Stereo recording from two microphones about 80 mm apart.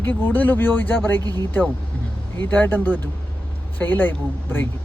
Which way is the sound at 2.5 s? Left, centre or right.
Left.